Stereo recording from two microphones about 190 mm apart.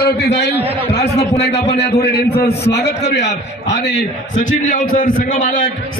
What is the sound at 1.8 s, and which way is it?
A man's voice, 60° left (ahead or behind).